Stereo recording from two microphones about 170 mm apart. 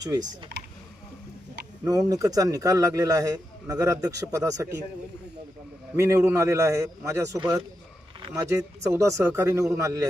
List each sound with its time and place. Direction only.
0.0 s speech: 20° right (ahead or behind)
1.8 s speech: 20° right (ahead or behind)
5.9 s speech: 15° right (ahead or behind)